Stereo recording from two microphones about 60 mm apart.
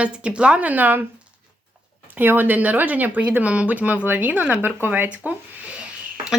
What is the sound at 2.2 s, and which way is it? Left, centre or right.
Speech, right.